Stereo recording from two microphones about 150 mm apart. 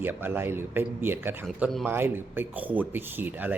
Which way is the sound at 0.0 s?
15° right (ahead or behind).